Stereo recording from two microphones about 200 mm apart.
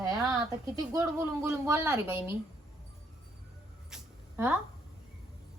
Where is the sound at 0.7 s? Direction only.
15° right (ahead or behind).